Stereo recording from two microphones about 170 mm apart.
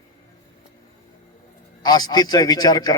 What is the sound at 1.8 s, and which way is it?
A man's voice, 25° left (ahead or behind).